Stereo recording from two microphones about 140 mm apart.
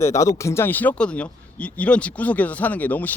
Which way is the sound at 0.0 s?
20° left (ahead or behind).